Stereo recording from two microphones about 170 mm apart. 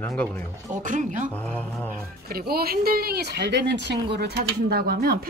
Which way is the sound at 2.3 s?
65° right (ahead or behind).